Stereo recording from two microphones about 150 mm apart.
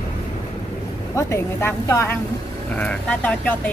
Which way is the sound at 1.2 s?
20° left (ahead or behind).